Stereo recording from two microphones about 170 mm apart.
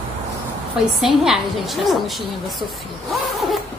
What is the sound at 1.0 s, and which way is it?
A woman's voice, centre (ahead or behind).